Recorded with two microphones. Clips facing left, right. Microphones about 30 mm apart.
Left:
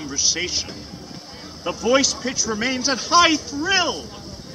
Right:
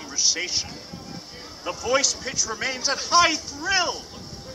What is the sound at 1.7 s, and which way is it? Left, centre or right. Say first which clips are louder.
A man's voice: left 5 dB; centre.